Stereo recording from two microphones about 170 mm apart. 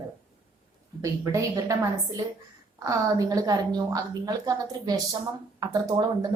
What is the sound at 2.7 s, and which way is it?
Speech, 20° right (ahead or behind).